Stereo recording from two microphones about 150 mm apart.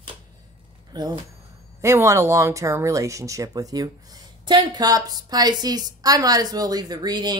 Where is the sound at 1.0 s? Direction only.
25° right (ahead or behind).